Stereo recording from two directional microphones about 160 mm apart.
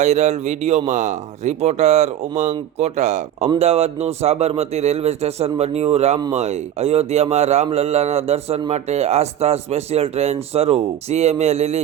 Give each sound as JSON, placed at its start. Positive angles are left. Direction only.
{"t": 0.0, "sound": "speech", "side_deg": -45}